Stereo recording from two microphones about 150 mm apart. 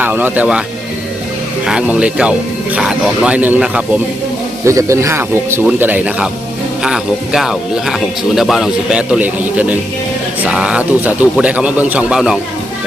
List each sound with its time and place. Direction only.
0.0 s a man's voice: 10° right (ahead or behind)
1.6 s a man's voice: 5° right (ahead or behind)
4.6 s a man's voice: 20° right (ahead or behind)